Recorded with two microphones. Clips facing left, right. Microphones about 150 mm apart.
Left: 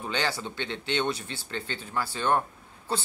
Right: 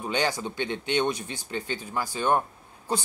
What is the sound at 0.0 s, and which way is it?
A woman's voice, 15° right (ahead or behind).